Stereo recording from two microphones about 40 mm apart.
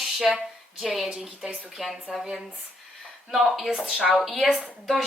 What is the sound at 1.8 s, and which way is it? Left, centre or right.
Speech, centre.